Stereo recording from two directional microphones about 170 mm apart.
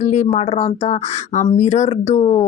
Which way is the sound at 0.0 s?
45° left (ahead or behind).